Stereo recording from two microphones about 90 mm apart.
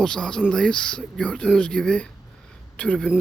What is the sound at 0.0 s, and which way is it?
Speech, 10° left (ahead or behind).